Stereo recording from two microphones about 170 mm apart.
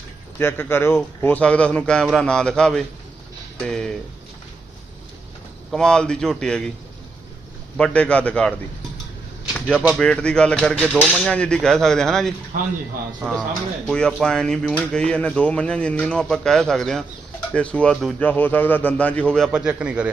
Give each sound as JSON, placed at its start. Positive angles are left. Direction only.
{"t": 0.3, "sound": "a man's voice", "side_deg": 10}
{"t": 5.7, "sound": "speech", "side_deg": 5}
{"t": 7.8, "sound": "a man's voice", "side_deg": 5}
{"t": 9.6, "sound": "a sound", "side_deg": 5}
{"t": 9.8, "sound": "speech", "side_deg": 0}
{"t": 12.5, "sound": "a man's voice", "side_deg": -50}
{"t": 13.8, "sound": "a man's voice", "side_deg": 5}
{"t": 19.5, "sound": "speech", "side_deg": -5}